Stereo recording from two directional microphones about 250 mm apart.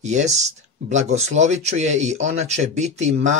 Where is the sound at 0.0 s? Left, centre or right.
Right.